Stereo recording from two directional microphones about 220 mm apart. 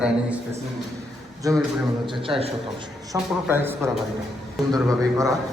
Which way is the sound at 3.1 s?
10° right (ahead or behind).